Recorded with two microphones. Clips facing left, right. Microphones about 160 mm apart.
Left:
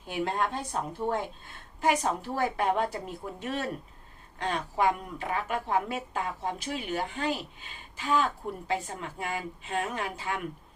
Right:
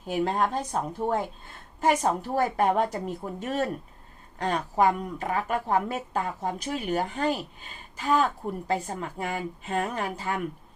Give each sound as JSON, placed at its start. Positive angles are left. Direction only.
{"t": 0.1, "sound": "a woman's voice", "side_deg": -40}